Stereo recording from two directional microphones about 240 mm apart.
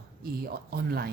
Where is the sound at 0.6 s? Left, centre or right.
Right.